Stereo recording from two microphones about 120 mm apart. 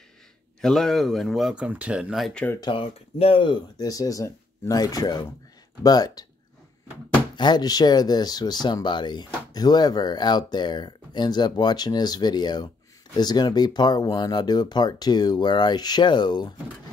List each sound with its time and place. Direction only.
0.6 s speech: 5° left (ahead or behind)
1.5 s speech: 10° right (ahead or behind)
2.6 s speech: 45° left (ahead or behind)
7.3 s speech: 35° left (ahead or behind)